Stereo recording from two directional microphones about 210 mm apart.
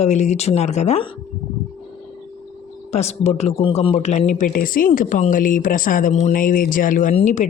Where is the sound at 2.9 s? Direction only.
30° left (ahead or behind).